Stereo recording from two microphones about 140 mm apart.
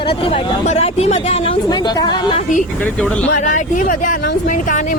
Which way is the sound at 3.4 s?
65° left (ahead or behind).